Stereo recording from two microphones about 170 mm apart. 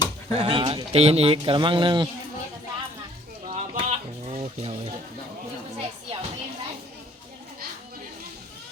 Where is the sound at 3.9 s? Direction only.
35° right (ahead or behind).